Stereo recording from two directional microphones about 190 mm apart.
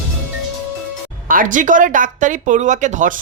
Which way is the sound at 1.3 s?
45° right (ahead or behind).